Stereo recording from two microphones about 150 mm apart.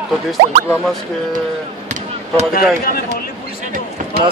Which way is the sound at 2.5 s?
75° left (ahead or behind).